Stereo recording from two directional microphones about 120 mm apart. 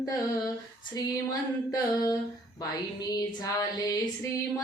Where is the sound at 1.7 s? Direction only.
30° left (ahead or behind).